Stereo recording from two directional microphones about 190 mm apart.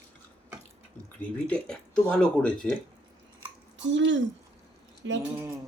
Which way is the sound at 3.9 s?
75° right (ahead or behind).